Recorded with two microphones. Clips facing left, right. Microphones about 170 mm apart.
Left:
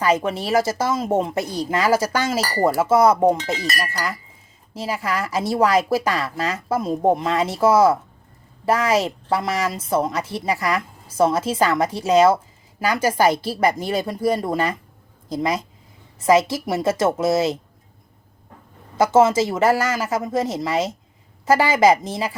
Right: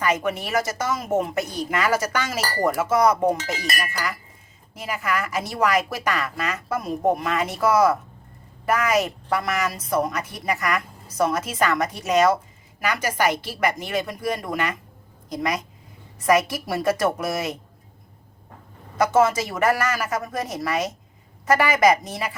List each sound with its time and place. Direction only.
0.0 s a woman's voice: 30° left (ahead or behind)
4.7 s a woman's voice: 30° left (ahead or behind)
18.9 s a woman's voice: 25° left (ahead or behind)